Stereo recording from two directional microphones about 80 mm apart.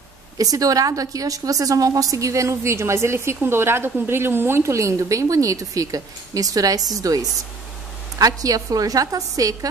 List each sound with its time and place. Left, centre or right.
0.4 s a woman's voice: right